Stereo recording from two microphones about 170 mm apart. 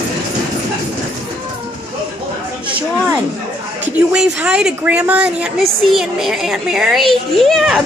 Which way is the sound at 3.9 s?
5° right (ahead or behind).